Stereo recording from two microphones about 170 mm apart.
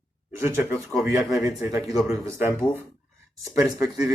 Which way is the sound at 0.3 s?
15° right (ahead or behind).